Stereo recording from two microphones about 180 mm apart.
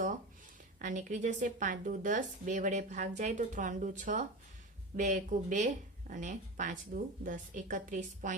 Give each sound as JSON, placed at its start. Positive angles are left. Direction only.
{"t": 0.8, "sound": "a woman's voice", "side_deg": -45}